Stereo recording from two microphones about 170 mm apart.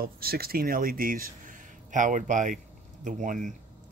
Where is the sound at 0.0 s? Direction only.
60° right (ahead or behind).